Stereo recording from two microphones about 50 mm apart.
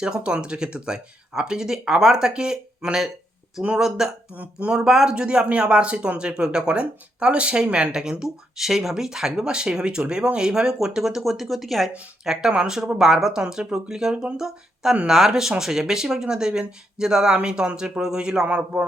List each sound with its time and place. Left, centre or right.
0.0 s a man's voice: centre